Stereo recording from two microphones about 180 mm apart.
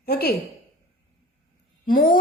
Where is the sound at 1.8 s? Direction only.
55° left (ahead or behind).